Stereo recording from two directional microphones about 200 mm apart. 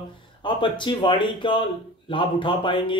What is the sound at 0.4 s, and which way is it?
Speech, 25° left (ahead or behind).